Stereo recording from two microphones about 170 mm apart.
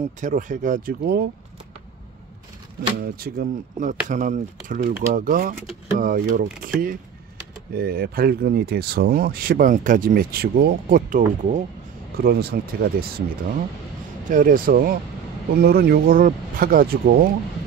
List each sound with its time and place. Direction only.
0.0 s speech: 50° right (ahead or behind); by 1.3 s 65° right (ahead or behind)
3.0 s speech: 65° right (ahead or behind)
4.1 s speech: 45° right (ahead or behind)
12.2 s speech: 65° right (ahead or behind)
14.3 s speech: 55° right (ahead or behind)